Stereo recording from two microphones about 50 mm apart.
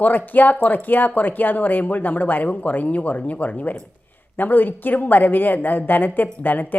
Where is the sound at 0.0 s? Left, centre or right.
Left.